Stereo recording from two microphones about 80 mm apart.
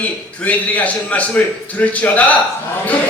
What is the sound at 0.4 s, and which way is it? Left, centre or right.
A man's voice, centre.